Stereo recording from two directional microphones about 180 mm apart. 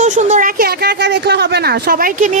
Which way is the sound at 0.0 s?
40° right (ahead or behind).